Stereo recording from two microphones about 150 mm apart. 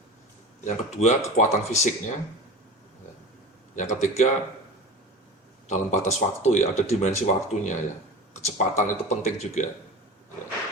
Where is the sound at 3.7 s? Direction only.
55° left (ahead or behind).